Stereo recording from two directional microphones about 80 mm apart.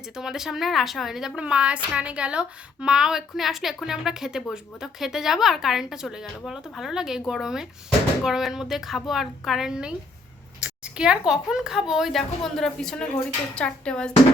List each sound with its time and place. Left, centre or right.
0.2 s a woman's voice: centre